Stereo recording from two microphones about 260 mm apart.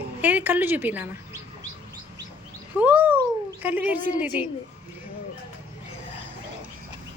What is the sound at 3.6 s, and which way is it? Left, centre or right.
Speech, centre.